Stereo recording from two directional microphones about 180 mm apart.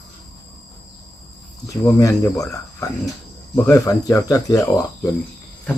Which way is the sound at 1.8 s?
15° left (ahead or behind).